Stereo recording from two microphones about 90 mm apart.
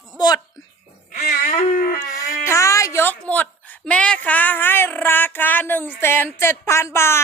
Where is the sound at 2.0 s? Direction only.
40° left (ahead or behind).